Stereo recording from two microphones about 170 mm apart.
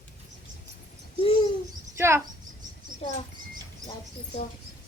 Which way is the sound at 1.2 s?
35° left (ahead or behind).